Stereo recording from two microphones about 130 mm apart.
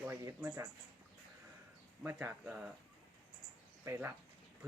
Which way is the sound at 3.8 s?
20° right (ahead or behind).